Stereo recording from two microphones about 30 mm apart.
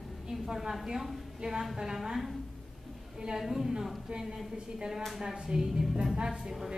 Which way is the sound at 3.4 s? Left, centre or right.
Centre.